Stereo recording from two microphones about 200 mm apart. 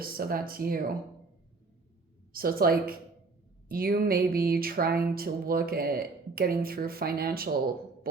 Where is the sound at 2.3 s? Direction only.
45° right (ahead or behind).